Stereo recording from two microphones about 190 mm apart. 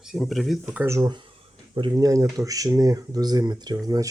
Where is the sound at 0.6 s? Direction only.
10° right (ahead or behind).